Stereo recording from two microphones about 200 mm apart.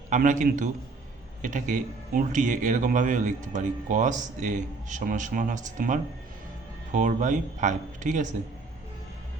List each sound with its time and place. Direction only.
0.1 s speech: 40° right (ahead or behind)